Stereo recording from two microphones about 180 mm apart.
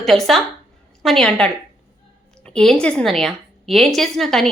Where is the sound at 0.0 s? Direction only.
Centre (ahead or behind).